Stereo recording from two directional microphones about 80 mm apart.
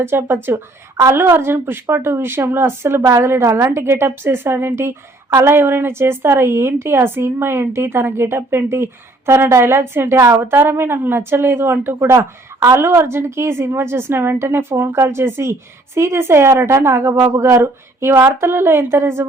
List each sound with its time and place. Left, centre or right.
0.0 s speech: right